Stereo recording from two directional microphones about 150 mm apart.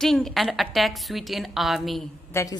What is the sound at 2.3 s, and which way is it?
Speech, 20° left (ahead or behind).